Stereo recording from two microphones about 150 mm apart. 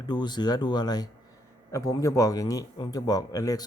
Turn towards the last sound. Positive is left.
turn(degrees=25)  # may be behind; listen again after turning